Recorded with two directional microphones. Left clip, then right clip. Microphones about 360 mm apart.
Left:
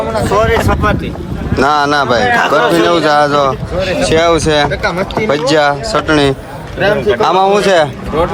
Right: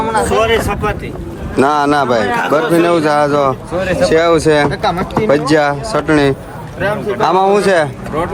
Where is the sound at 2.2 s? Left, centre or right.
Centre.